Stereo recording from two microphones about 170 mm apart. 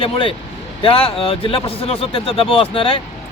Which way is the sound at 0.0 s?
30° left (ahead or behind).